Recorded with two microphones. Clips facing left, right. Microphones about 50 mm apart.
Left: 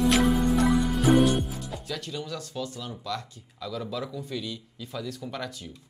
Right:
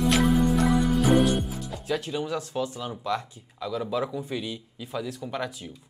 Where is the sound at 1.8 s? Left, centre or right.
Right.